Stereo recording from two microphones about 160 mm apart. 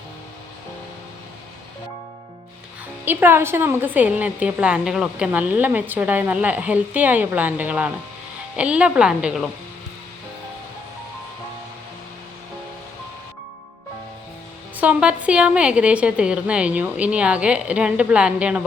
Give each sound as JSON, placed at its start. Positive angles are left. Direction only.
{"t": 3.0, "sound": "a woman's voice", "side_deg": -15}
{"t": 14.8, "sound": "a woman's voice", "side_deg": -10}